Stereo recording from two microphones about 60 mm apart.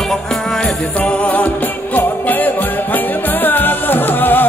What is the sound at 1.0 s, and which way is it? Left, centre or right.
Music, left.